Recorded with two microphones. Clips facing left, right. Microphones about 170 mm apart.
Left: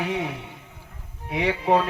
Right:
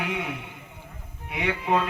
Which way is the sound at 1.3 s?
35° left (ahead or behind).